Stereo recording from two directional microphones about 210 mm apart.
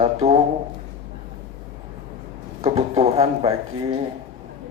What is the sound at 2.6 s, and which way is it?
Speech, 30° right (ahead or behind).